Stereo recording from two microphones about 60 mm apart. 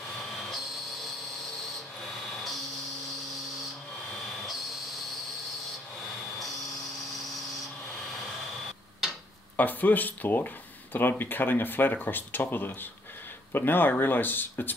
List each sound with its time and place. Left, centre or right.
9.6 s speech: left